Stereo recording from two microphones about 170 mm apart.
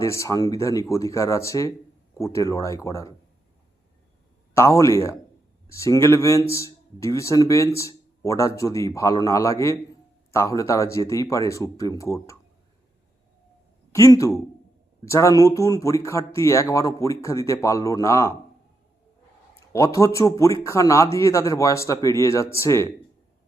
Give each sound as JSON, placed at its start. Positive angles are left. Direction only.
{"t": 0.0, "sound": "speech", "side_deg": 20}
{"t": 4.5, "sound": "speech", "side_deg": 15}
{"t": 13.9, "sound": "speech", "side_deg": 20}
{"t": 19.7, "sound": "speech", "side_deg": 15}